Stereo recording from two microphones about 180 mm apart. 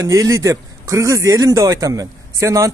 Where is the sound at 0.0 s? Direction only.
15° right (ahead or behind).